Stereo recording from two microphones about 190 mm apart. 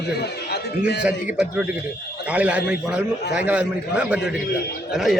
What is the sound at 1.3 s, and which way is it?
A man's voice, 5° right (ahead or behind).